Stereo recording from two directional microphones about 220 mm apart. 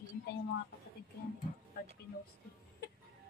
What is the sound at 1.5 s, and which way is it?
Music, 35° left (ahead or behind).